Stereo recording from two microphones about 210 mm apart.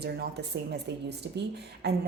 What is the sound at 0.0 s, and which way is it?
Speech, 50° right (ahead or behind).